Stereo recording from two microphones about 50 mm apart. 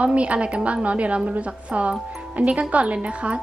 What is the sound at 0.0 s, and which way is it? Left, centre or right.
A woman's voice, right.